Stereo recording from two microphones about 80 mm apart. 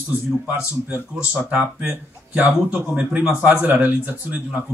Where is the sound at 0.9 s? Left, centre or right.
Centre.